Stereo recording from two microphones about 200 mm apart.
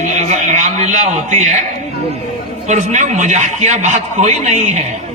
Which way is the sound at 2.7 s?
35° right (ahead or behind).